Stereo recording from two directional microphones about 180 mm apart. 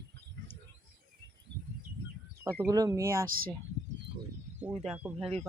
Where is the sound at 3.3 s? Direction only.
55° right (ahead or behind).